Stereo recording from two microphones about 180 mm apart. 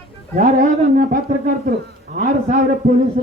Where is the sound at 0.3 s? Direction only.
45° right (ahead or behind).